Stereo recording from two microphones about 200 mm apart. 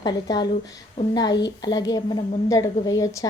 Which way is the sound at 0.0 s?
20° left (ahead or behind).